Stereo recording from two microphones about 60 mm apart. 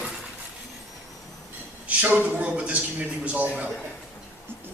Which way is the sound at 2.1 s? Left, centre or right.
Right.